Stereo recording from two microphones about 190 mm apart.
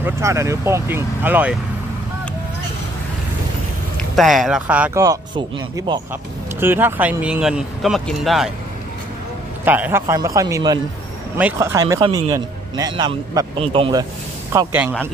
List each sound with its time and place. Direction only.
0.0 s speech: 15° right (ahead or behind)
4.1 s speech: centre (ahead or behind)
5.0 s a man's voice: 20° right (ahead or behind)
6.6 s speech: 10° right (ahead or behind)
9.7 s a man's voice: 10° right (ahead or behind); by 14.0 s 25° right (ahead or behind)
14.5 s speech: 15° right (ahead or behind)